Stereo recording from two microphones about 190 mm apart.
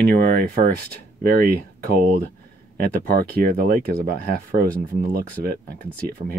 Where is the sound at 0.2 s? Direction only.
55° right (ahead or behind).